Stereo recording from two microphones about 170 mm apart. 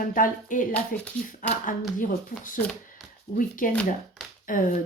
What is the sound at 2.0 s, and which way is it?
A woman's voice, 50° left (ahead or behind).